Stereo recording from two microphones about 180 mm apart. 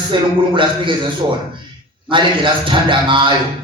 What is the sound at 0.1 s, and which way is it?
Speech, 25° right (ahead or behind).